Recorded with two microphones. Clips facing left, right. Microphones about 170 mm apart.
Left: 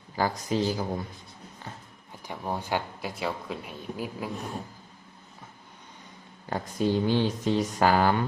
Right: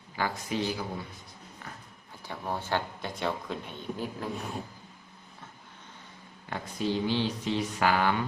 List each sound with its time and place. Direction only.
0.2 s speech: 40° left (ahead or behind)
2.2 s speech: 15° left (ahead or behind)
6.5 s speech: 45° left (ahead or behind)